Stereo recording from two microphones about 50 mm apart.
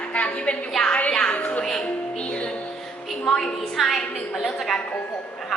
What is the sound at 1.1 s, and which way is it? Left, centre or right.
Music, centre.